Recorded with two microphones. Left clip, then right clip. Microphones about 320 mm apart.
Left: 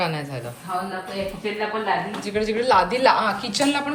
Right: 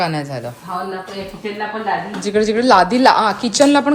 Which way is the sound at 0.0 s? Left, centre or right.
Centre.